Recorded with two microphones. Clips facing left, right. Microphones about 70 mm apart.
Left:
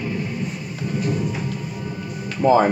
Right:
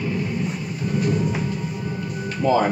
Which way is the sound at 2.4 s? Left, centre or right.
Left.